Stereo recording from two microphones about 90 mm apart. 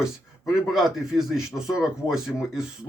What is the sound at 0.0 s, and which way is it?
A man's voice, 5° right (ahead or behind).